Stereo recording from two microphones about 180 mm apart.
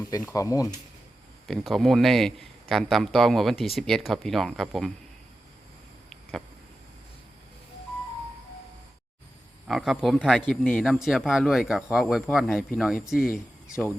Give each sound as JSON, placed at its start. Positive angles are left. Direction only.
{"t": 0.3, "sound": "speech", "side_deg": 20}
{"t": 1.5, "sound": "a man's voice", "side_deg": 0}
{"t": 9.6, "sound": "a man's voice", "side_deg": 0}
{"t": 13.3, "sound": "speech", "side_deg": 15}